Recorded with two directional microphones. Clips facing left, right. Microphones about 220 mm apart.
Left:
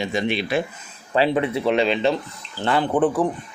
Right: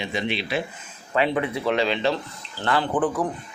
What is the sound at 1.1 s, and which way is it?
Speech, 30° left (ahead or behind).